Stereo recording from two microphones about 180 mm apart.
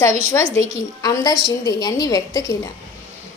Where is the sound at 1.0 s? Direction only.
20° left (ahead or behind).